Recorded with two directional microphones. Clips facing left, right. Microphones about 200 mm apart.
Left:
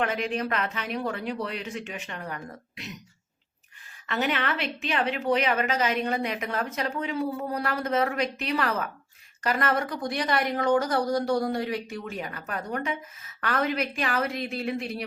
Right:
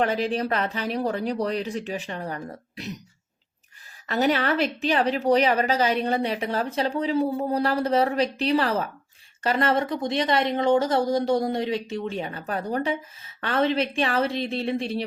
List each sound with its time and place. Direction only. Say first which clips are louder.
0.0 s speech: right 4 dB; 35° right (ahead or behind)
4.0 s speech: right 5 dB; 35° right (ahead or behind)